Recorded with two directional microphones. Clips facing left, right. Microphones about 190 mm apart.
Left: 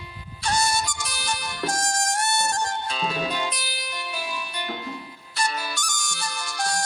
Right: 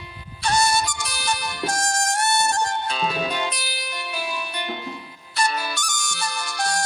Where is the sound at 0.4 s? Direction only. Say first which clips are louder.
Right 3 dB; 65° right (ahead or behind).